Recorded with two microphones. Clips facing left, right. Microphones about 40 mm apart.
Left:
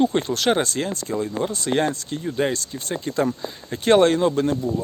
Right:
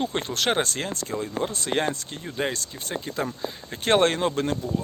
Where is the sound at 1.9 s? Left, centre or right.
Right.